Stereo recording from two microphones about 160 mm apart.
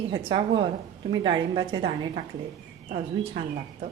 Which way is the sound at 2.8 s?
50° right (ahead or behind).